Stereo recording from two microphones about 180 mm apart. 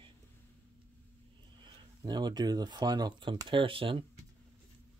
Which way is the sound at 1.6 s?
25° right (ahead or behind).